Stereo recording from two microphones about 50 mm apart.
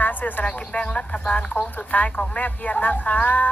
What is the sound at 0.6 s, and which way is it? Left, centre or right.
A man's voice, centre.